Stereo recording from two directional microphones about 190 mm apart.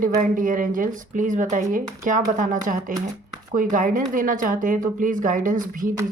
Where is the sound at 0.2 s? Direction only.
45° right (ahead or behind).